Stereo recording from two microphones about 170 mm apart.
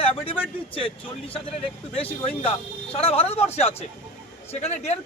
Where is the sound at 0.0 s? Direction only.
35° left (ahead or behind).